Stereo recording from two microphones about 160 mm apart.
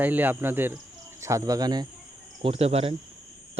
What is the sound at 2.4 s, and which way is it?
Speech, 40° right (ahead or behind).